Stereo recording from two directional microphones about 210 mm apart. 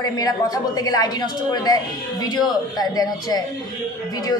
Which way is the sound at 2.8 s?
20° left (ahead or behind).